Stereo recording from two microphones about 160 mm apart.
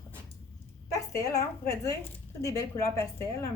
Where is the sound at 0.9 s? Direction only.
20° left (ahead or behind).